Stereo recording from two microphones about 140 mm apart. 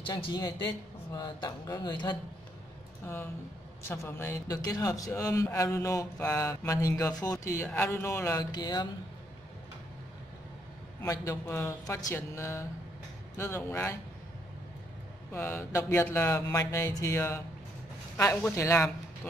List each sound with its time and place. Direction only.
0.0 s a man's voice: 30° left (ahead or behind)
3.8 s a man's voice: 15° left (ahead or behind)
11.0 s a man's voice: 20° left (ahead or behind)
15.3 s a man's voice: 15° left (ahead or behind)